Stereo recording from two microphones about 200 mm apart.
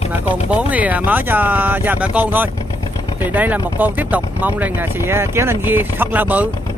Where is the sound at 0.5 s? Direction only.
5° right (ahead or behind).